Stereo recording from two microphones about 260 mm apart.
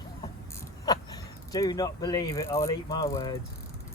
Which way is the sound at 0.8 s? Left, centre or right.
Centre.